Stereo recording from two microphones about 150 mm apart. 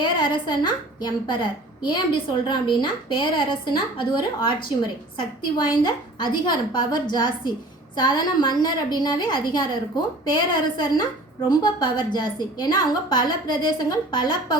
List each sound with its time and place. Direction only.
0.0 s a woman's voice: 30° left (ahead or behind)